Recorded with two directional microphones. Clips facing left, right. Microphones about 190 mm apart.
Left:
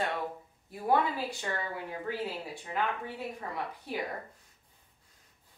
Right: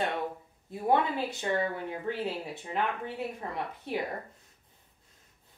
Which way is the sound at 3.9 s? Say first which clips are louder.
Right 4 dB; 25° right (ahead or behind).